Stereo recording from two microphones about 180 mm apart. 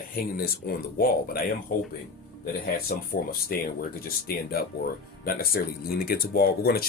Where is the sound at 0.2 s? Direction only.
55° left (ahead or behind).